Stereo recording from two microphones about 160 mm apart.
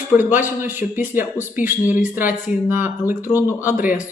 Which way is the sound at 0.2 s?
10° right (ahead or behind).